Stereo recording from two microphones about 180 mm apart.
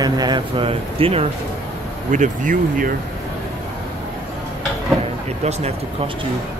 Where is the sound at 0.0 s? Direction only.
25° right (ahead or behind).